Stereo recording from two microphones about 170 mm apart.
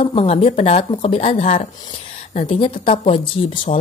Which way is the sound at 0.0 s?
35° left (ahead or behind).